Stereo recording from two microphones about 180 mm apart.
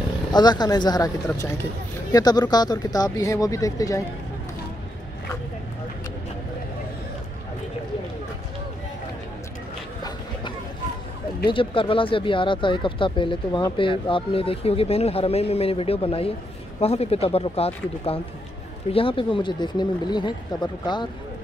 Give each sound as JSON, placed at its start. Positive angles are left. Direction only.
{"t": 0.3, "sound": "speech", "side_deg": 25}
{"t": 11.5, "sound": "speech", "side_deg": 30}